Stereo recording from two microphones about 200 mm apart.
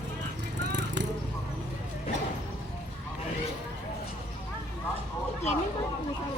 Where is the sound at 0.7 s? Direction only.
65° right (ahead or behind).